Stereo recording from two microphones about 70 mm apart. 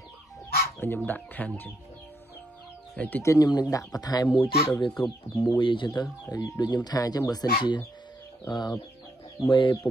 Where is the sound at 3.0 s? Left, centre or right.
Left.